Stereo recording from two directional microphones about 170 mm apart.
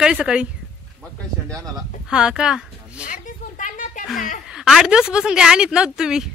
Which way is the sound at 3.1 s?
50° left (ahead or behind).